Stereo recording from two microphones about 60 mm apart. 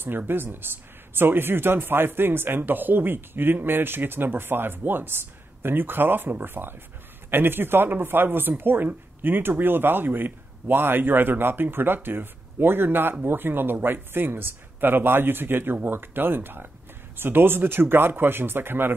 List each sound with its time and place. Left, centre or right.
0.3 s speech: right